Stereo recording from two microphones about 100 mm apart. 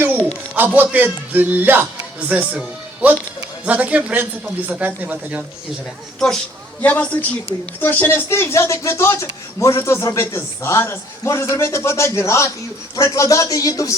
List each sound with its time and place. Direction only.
0.0 s a sound: 20° right (ahead or behind)
0.5 s a man's voice: 20° right (ahead or behind)
6.1 s speech: 5° left (ahead or behind)
6.8 s a woman's voice: 15° left (ahead or behind); by 13.9 s 35° left (ahead or behind)